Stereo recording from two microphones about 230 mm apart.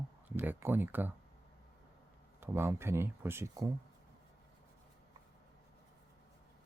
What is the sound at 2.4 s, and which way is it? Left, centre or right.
Speech, centre.